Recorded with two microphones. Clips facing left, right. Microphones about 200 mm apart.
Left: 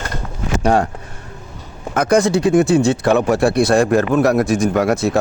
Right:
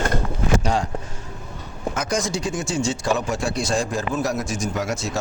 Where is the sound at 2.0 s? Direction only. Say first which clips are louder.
Left 11 dB; 60° left (ahead or behind).